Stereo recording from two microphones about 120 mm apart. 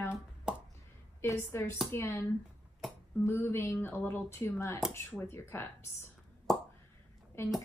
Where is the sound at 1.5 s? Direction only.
20° left (ahead or behind).